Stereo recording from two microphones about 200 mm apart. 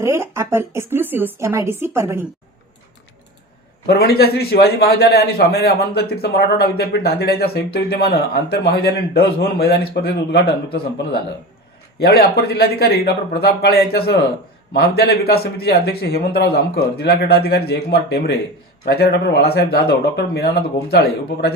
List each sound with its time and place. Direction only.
0.0 s speech: 15° right (ahead or behind)
3.8 s a man's voice: 55° left (ahead or behind)